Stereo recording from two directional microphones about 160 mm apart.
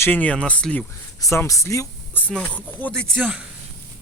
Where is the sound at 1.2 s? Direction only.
20° left (ahead or behind).